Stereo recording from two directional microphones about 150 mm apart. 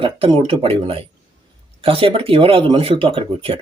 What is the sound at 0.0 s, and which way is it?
Speech, 35° right (ahead or behind).